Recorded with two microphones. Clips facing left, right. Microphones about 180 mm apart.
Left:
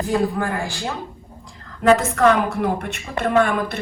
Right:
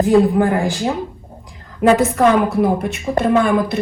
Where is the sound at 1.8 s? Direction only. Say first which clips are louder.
Right 2 dB; 65° right (ahead or behind).